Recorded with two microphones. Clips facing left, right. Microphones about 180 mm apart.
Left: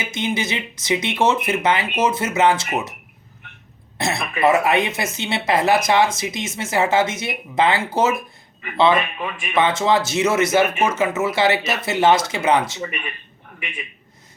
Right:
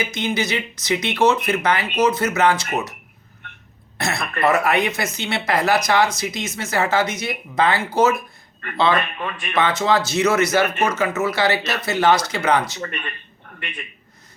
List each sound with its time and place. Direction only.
0.0 s speech: 25° left (ahead or behind)
3.9 s throat clearing: 25° left (ahead or behind)
4.4 s speech: 25° left (ahead or behind)
9.0 s speech: 5° left (ahead or behind)
9.6 s speech: 20° left (ahead or behind)
12.8 s speech: 5° left (ahead or behind)